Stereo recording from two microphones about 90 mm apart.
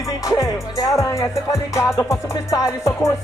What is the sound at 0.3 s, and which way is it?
Music, 40° left (ahead or behind).